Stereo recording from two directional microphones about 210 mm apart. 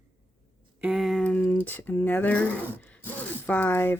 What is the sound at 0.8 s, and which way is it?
Speech, 5° right (ahead or behind).